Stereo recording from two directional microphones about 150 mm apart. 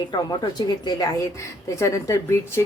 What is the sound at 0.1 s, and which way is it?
A woman's voice, 30° left (ahead or behind).